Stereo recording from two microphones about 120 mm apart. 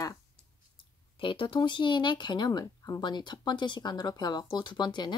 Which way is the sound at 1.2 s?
45° left (ahead or behind).